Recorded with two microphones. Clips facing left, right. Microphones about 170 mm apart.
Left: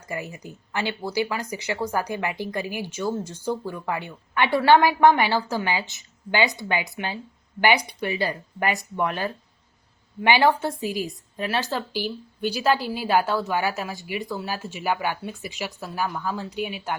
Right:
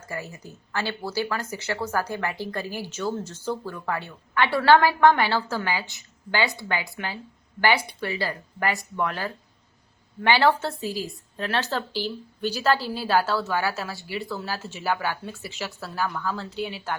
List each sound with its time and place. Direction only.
0.1 s a woman's voice: 15° left (ahead or behind)